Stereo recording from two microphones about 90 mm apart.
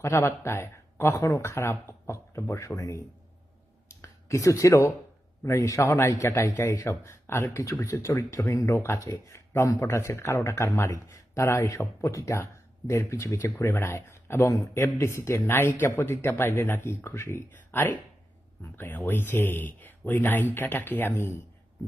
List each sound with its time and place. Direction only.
0.0 s a man's voice: 30° left (ahead or behind)